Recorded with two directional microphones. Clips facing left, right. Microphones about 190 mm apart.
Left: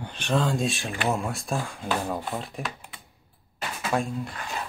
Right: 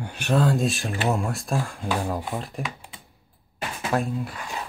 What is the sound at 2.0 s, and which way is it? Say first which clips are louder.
Speech: right 2 dB; 10° right (ahead or behind).